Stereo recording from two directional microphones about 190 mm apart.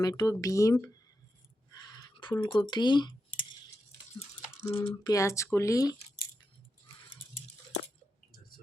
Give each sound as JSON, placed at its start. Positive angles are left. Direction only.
{"t": 0.0, "sound": "speech", "side_deg": 20}
{"t": 2.0, "sound": "speech", "side_deg": 25}
{"t": 4.8, "sound": "speech", "side_deg": 15}
{"t": 8.3, "sound": "a sound", "side_deg": 50}